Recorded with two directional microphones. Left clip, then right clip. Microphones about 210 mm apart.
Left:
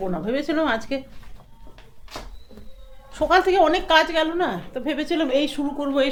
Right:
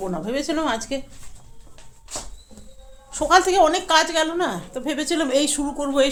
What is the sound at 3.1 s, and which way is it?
Speech, 5° right (ahead or behind).